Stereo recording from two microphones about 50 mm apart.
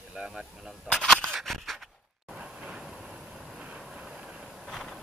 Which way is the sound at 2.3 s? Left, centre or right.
Centre.